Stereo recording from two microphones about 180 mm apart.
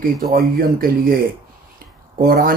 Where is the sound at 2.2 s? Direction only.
55° right (ahead or behind).